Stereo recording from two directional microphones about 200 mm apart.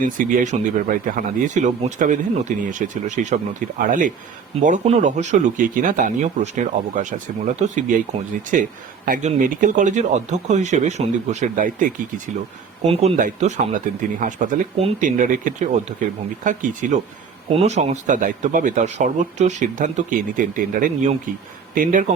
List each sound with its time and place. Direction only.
0.0 s speech: 40° right (ahead or behind)
12.8 s speech: 30° right (ahead or behind)